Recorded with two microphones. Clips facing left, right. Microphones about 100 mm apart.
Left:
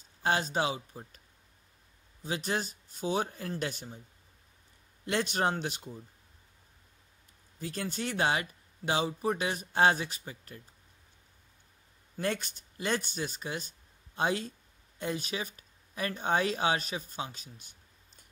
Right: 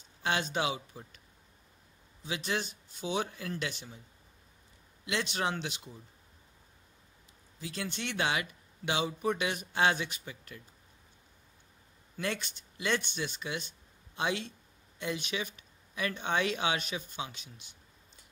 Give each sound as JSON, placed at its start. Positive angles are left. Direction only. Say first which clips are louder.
{"t": 0.2, "sound": "speech", "louder": "left 2 dB", "side_deg": 40}
{"t": 2.2, "sound": "speech", "louder": "left 2 dB", "side_deg": 40}
{"t": 5.0, "sound": "a man's voice", "louder": "left 3 dB", "side_deg": 45}
{"t": 7.6, "sound": "speech", "louder": "left 3 dB", "side_deg": 45}
{"t": 12.2, "sound": "speech", "louder": "left 3 dB", "side_deg": 45}